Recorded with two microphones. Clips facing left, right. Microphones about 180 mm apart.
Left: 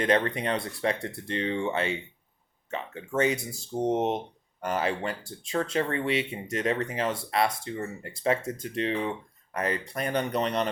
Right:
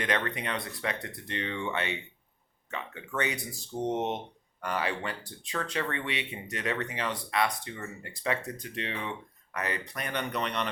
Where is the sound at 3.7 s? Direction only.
40° left (ahead or behind).